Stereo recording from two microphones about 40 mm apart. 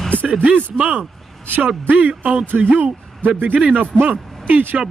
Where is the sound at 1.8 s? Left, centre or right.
Right.